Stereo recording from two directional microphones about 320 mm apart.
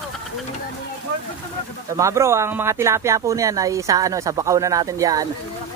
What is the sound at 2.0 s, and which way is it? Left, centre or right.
Speech, centre.